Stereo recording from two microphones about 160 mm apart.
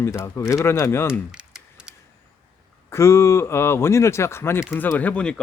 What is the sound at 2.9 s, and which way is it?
Speech, 15° left (ahead or behind).